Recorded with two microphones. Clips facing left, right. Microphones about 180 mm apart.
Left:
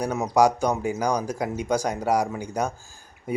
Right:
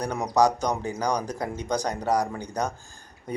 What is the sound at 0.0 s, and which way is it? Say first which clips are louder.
Speech: left 2 dB; 10° left (ahead or behind).